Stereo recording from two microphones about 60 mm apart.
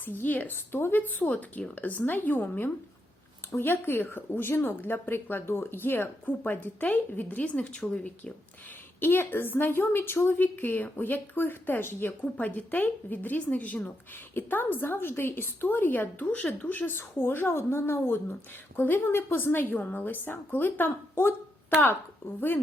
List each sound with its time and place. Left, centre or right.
0.0 s a woman's voice: left
9.0 s a woman's voice: left
16.9 s a woman's voice: left
22.4 s a woman's voice: left